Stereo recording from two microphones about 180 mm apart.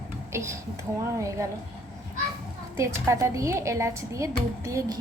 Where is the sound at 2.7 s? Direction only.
15° right (ahead or behind).